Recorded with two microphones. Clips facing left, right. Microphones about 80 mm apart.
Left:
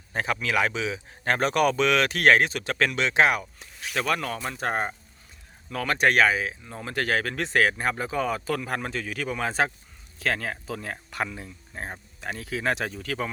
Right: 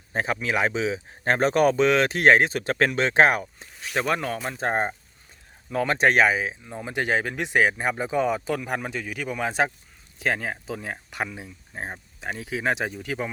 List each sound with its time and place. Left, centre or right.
0.1 s speech: right
3.6 s speech: right